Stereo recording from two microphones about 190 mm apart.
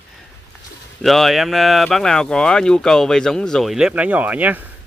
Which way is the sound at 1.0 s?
Centre (ahead or behind).